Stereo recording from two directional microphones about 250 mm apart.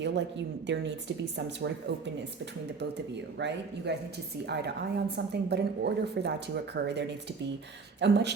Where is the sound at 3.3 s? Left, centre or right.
Right.